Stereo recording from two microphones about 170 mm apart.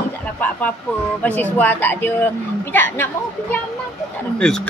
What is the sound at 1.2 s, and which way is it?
A woman's voice, 10° left (ahead or behind).